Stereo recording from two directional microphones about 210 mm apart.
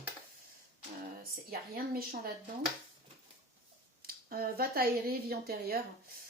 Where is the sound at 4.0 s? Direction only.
45° right (ahead or behind).